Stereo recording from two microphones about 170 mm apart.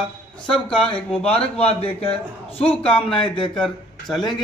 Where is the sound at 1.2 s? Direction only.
5° left (ahead or behind).